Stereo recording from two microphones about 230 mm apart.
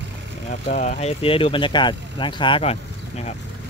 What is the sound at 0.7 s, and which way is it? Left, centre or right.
Speech, left.